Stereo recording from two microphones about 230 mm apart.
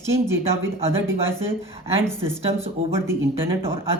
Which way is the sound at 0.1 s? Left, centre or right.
Centre.